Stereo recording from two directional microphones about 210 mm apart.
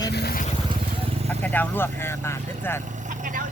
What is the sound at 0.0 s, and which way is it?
Vehicle, 50° left (ahead or behind).